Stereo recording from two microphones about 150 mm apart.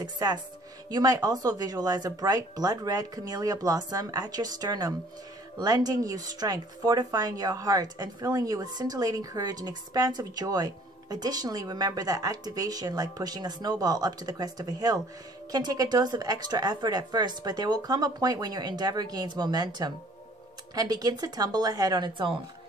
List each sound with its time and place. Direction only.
0.0 s speech: 25° right (ahead or behind)